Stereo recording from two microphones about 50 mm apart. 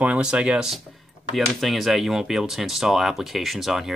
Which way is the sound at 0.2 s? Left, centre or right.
Centre.